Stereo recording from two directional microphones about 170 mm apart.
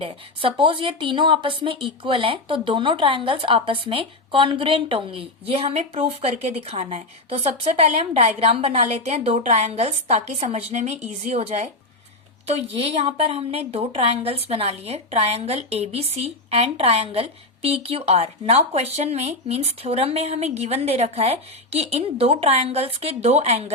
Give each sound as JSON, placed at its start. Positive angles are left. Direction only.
{"t": 0.0, "sound": "speech", "side_deg": -30}